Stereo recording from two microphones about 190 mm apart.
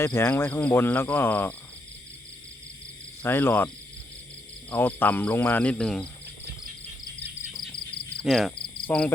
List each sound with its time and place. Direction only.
0.0 s speech: 15° left (ahead or behind)
3.2 s speech: 10° left (ahead or behind)
4.7 s speech: 10° left (ahead or behind)
8.2 s speech: centre (ahead or behind)
8.5 s cricket: 25° left (ahead or behind)
8.9 s speech: 5° left (ahead or behind)